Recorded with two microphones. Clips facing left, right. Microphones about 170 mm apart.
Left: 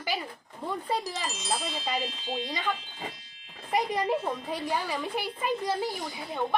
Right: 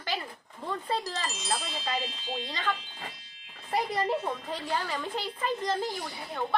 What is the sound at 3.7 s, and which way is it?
Speech, 15° left (ahead or behind).